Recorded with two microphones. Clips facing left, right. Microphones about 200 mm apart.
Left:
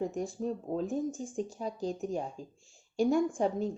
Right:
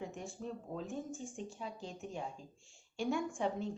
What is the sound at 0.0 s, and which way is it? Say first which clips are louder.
A woman's voice: left 10 dB; 40° left (ahead or behind).